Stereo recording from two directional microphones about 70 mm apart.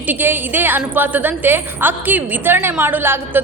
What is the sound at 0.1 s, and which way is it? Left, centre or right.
A woman's voice, right.